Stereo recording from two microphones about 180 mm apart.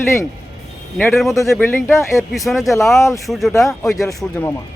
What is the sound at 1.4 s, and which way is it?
Speech, 15° left (ahead or behind).